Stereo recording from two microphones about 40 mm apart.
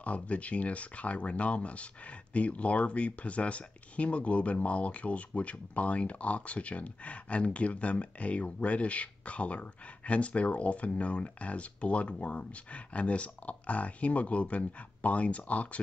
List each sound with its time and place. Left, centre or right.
0.0 s speech: left